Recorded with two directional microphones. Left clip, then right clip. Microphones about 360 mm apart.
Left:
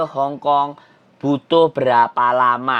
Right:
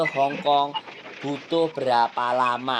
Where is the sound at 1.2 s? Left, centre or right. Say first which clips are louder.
Left 9 dB; left.